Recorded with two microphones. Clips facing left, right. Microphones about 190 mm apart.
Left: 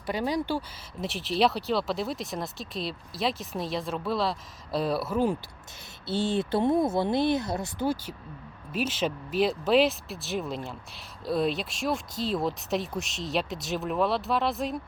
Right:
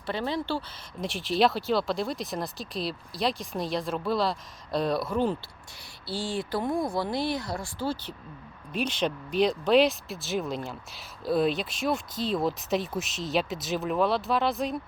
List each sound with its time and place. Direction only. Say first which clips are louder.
0.0 s speech: left 2 dB; 15° left (ahead or behind)
1.0 s speech: right 1 dB; centre (ahead or behind)
6.1 s speech: left 4 dB; 20° left (ahead or behind)
8.7 s speech: even; 5° left (ahead or behind)